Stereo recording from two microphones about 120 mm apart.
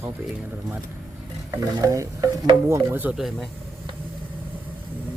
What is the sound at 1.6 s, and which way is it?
Stir, 25° right (ahead or behind).